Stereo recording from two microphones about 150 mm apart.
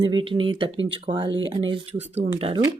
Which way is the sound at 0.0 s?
35° right (ahead or behind).